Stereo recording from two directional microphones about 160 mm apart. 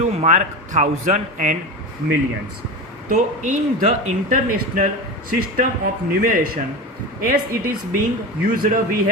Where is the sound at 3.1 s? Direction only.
55° right (ahead or behind).